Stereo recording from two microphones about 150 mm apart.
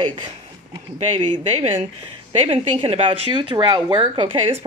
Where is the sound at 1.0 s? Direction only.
45° right (ahead or behind).